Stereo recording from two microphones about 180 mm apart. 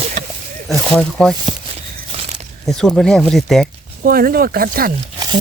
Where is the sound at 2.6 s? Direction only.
Centre (ahead or behind).